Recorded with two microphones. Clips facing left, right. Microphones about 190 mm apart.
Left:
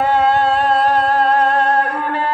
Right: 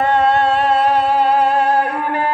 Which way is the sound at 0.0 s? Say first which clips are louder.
Even; 5° left (ahead or behind).